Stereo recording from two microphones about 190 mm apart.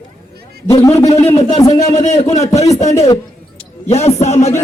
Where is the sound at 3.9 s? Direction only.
35° left (ahead or behind).